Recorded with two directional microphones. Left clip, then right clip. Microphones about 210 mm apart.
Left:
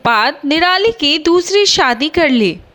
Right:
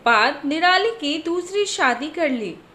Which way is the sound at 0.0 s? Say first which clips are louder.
Left 4 dB; 50° left (ahead or behind).